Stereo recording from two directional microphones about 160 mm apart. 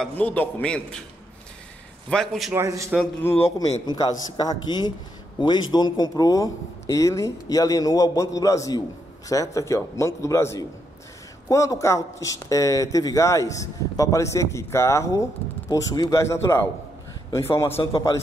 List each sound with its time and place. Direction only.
0.2 s a man's voice: 10° left (ahead or behind)
2.0 s a man's voice: centre (ahead or behind)
2.5 s a man's voice: 20° right (ahead or behind)
3.2 s a man's voice: 15° left (ahead or behind)
3.8 s a man's voice: 25° left (ahead or behind)